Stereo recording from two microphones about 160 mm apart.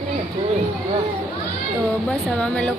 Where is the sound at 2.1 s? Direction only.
5° left (ahead or behind).